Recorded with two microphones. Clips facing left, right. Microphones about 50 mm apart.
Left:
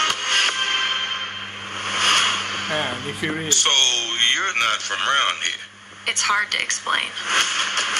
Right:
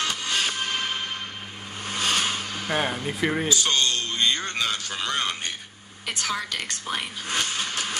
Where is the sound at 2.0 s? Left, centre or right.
Left.